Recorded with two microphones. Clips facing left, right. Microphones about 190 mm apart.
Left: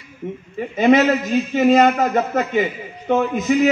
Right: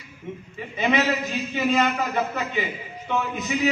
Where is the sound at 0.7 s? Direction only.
45° left (ahead or behind).